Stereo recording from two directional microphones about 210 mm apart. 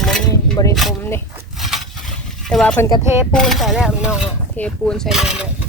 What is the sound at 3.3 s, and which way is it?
Speech, centre (ahead or behind).